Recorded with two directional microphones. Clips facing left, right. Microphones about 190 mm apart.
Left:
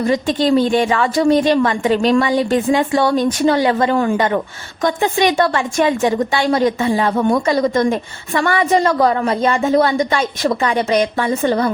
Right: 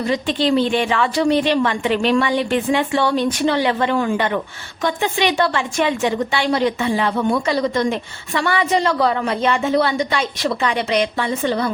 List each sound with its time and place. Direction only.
0.0 s a woman's voice: 45° left (ahead or behind)